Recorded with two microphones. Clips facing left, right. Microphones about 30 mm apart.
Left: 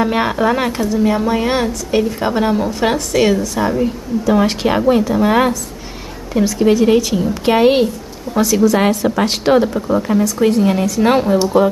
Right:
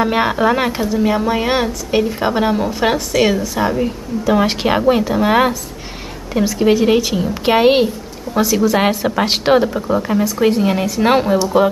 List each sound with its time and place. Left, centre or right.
0.0 s a woman's voice: centre